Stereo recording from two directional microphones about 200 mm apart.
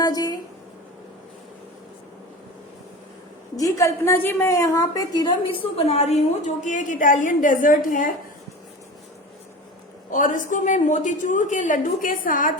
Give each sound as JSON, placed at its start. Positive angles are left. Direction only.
{"t": 0.0, "sound": "a sound", "side_deg": 20}
{"t": 3.6, "sound": "a woman's voice", "side_deg": 15}
{"t": 10.1, "sound": "a woman's voice", "side_deg": 40}